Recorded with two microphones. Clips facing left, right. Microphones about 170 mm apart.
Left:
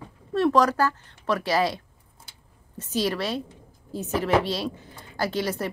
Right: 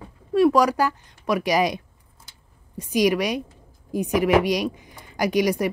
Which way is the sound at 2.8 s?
15° right (ahead or behind).